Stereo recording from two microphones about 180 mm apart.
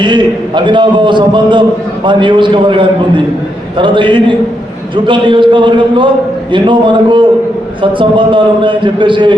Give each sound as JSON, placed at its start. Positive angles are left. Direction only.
{"t": 0.0, "sound": "a man's voice", "side_deg": -25}